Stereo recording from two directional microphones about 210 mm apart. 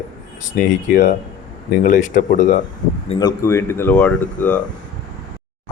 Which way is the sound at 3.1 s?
30° left (ahead or behind).